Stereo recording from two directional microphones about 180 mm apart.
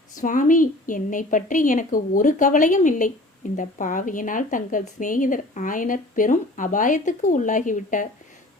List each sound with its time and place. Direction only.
0.2 s a woman's voice: 45° left (ahead or behind)